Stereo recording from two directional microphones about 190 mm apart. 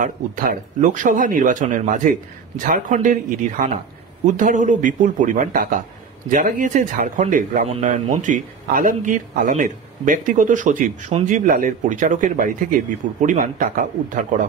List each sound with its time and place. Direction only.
0.0 s speech: 45° right (ahead or behind)